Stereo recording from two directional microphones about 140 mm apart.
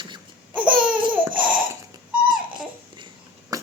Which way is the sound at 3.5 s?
25° right (ahead or behind).